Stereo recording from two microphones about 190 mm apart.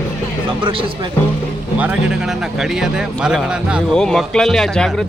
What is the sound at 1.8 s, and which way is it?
Speech, 5° right (ahead or behind).